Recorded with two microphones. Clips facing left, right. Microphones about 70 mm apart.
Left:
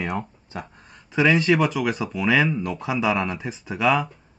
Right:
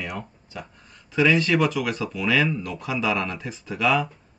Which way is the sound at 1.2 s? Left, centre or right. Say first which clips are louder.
Left 1 dB; centre.